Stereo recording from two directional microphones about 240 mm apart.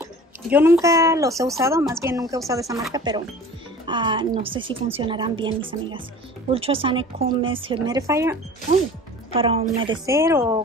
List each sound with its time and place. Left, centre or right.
0.0 s a woman's voice: centre
9.3 s a woman's voice: right